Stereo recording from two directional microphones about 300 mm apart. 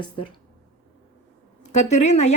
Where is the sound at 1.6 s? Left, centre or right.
Left.